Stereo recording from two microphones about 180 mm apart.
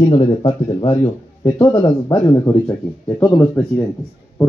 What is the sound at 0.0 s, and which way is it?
Speech, 25° left (ahead or behind).